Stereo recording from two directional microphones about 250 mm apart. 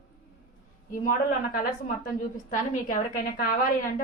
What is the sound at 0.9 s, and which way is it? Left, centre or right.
Speech, left.